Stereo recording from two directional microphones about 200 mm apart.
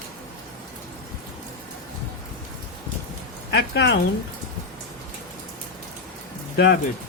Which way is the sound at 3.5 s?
55° left (ahead or behind).